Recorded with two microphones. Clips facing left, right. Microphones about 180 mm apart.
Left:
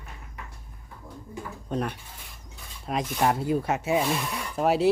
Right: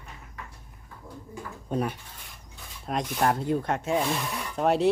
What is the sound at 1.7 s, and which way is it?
Speech, 5° right (ahead or behind).